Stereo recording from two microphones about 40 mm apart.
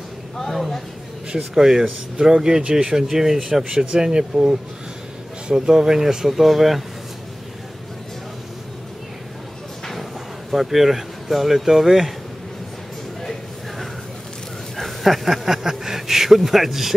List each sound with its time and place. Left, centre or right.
0.4 s speech: centre
1.3 s speech: centre
3.8 s speech: right
5.5 s speech: centre
10.5 s speech: centre
13.2 s a sound: centre
14.8 s a man's voice: centre